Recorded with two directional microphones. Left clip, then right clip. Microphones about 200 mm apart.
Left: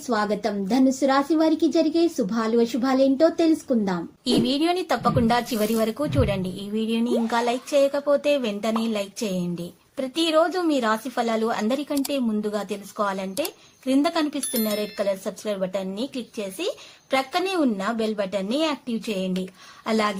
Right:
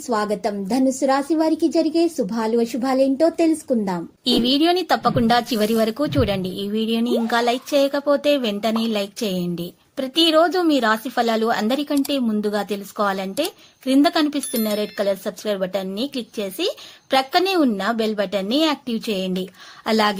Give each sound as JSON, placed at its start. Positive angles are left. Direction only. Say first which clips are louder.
{"t": 0.1, "sound": "speech", "louder": "right 2 dB", "side_deg": -30}